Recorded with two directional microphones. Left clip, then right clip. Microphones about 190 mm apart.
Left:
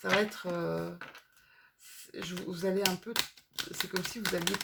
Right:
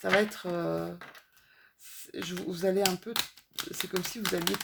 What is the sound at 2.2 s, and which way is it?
Speech, 35° right (ahead or behind).